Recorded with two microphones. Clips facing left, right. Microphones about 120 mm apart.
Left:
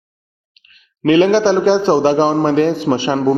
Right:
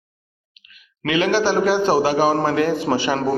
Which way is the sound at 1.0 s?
35° left (ahead or behind).